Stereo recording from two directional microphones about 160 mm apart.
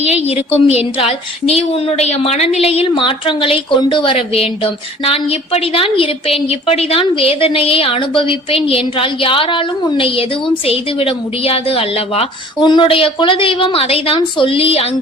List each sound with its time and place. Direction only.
0.0 s a woman's voice: 40° left (ahead or behind)